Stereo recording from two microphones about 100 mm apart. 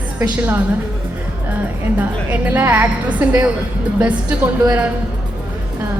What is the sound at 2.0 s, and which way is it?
A woman's voice, 15° right (ahead or behind).